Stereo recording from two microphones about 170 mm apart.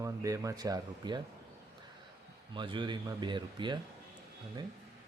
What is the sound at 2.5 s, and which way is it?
Speech, 30° right (ahead or behind).